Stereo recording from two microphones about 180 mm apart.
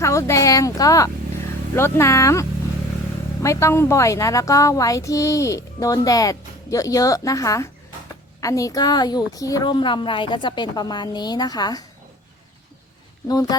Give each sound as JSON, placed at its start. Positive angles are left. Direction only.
{"t": 0.0, "sound": "a woman's voice", "side_deg": 15}
{"t": 13.2, "sound": "a woman's voice", "side_deg": 20}